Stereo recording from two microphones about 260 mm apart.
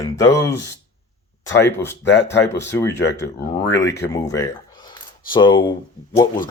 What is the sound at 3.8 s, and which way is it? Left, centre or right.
Speech, centre.